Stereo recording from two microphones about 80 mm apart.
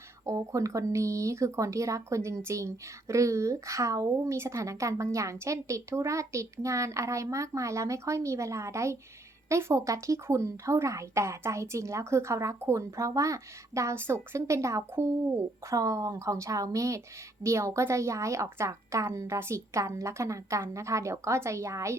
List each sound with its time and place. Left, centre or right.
0.3 s speech: right